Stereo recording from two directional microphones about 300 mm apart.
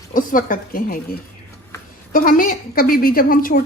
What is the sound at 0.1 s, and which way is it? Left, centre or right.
Speech, left.